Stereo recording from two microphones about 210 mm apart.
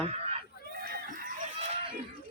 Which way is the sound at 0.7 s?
45° right (ahead or behind).